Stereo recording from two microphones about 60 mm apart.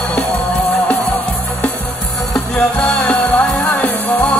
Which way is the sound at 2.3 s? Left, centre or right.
Left.